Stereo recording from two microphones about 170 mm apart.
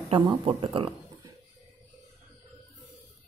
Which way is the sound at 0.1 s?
30° right (ahead or behind).